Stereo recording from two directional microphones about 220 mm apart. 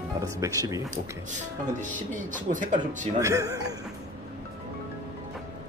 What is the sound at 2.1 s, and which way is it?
Speech, 35° right (ahead or behind).